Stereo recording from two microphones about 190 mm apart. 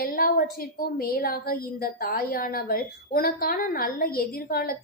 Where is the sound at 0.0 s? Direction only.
50° left (ahead or behind).